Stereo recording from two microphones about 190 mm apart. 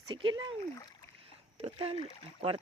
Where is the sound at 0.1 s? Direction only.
25° right (ahead or behind).